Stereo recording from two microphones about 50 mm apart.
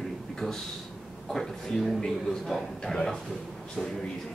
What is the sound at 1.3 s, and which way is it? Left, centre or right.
A man's voice, centre.